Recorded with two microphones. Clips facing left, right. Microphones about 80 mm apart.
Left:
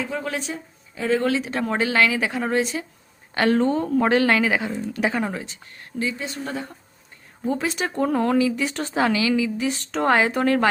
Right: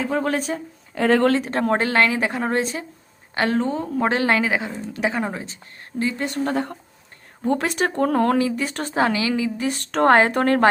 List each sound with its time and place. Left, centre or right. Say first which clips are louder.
0.0 s speech: right 5 dB; right
0.9 s speech: right 4 dB; right
1.4 s a woman's voice: right 3 dB; right
3.3 s speech: left 2 dB; right
4.1 s speech: even; right
6.0 s speech: right 4 dB; right